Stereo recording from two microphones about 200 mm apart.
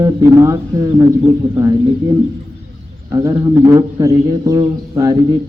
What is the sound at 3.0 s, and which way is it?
Speech, 15° right (ahead or behind).